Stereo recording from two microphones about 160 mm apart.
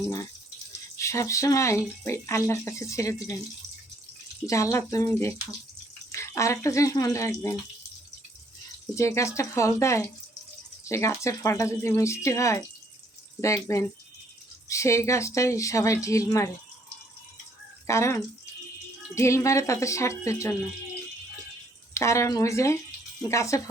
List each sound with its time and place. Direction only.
0.9 s speech: 20° left (ahead or behind)
4.4 s speech: 20° left (ahead or behind)
9.0 s speech: 20° left (ahead or behind)
17.8 s speech: 20° left (ahead or behind)
21.9 s speech: 20° left (ahead or behind)